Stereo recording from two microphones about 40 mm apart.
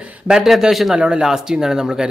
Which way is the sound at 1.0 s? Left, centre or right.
Right.